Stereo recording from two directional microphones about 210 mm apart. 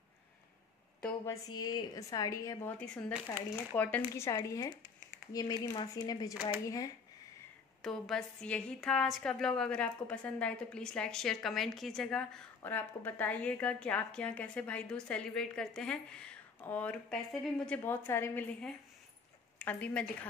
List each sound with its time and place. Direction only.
1.2 s a woman's voice: 15° left (ahead or behind)
2.8 s a woman's voice: 5° left (ahead or behind)
7.8 s a woman's voice: centre (ahead or behind)